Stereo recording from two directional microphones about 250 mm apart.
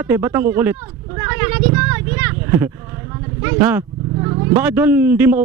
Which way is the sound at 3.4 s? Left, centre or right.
Centre.